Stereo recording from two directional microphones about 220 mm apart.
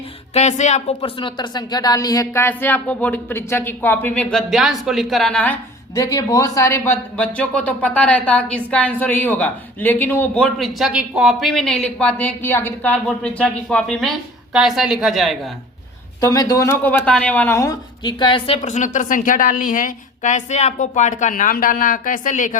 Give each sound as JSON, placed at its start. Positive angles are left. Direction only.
{"t": 0.3, "sound": "speech", "side_deg": 30}
{"t": 5.9, "sound": "speech", "side_deg": 15}
{"t": 16.2, "sound": "speech", "side_deg": 15}